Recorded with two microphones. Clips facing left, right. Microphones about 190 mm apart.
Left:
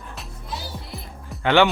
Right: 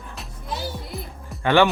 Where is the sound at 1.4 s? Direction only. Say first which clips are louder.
Even; 20° left (ahead or behind).